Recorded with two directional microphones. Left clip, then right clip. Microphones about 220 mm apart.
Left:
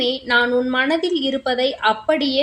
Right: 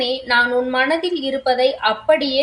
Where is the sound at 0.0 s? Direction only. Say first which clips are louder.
Right 1 dB; 45° left (ahead or behind).